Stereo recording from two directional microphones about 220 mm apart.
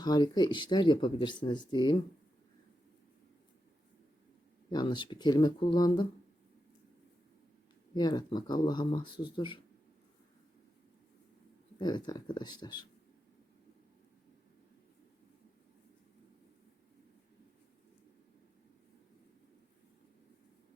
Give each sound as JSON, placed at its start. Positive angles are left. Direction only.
{"t": 0.0, "sound": "speech", "side_deg": 20}
{"t": 4.7, "sound": "speech", "side_deg": 20}
{"t": 7.9, "sound": "speech", "side_deg": 20}
{"t": 11.8, "sound": "speech", "side_deg": 20}